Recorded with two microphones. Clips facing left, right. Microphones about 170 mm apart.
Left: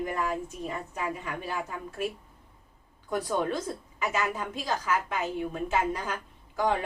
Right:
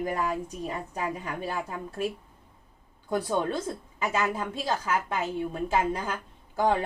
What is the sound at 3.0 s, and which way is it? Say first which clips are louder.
A woman's voice: right 1 dB; 30° right (ahead or behind).